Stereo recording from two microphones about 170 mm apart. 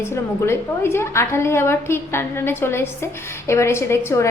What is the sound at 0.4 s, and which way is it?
A woman's voice, 15° left (ahead or behind).